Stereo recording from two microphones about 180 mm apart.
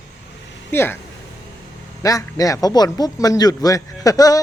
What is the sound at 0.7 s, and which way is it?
Speech, 10° left (ahead or behind).